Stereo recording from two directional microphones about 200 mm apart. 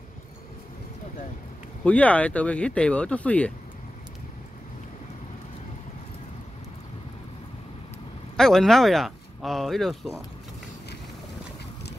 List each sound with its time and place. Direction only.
1.9 s speech: 5° left (ahead or behind)
8.4 s speech: centre (ahead or behind)